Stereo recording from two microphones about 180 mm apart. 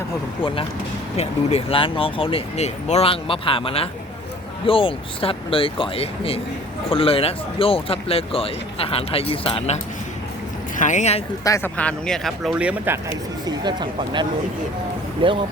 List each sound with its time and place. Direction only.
1.1 s speech: 35° left (ahead or behind)
10.8 s speech: 45° left (ahead or behind)
11.4 s speech: 15° left (ahead or behind); by 13.1 s 10° right (ahead or behind)
13.6 s speech: 25° right (ahead or behind)